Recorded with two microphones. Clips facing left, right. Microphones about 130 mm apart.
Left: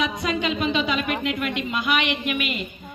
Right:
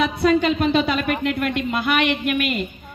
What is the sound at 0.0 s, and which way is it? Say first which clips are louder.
A woman's voice: right 7 dB; 45° right (ahead or behind).